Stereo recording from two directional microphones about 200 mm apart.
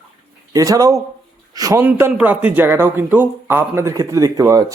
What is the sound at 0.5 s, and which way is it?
A man's voice, 15° right (ahead or behind).